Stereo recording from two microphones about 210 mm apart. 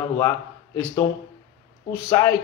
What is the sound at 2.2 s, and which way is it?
Speech, 15° left (ahead or behind).